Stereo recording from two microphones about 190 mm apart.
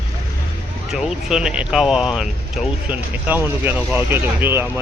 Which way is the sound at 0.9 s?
5° right (ahead or behind).